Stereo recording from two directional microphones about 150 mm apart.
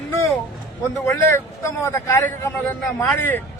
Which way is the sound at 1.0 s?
20° left (ahead or behind).